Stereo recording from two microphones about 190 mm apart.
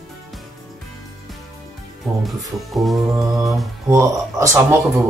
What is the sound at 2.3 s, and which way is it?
Speech, centre (ahead or behind).